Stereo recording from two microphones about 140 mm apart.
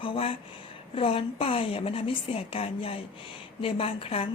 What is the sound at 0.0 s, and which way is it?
A woman's voice, 40° left (ahead or behind).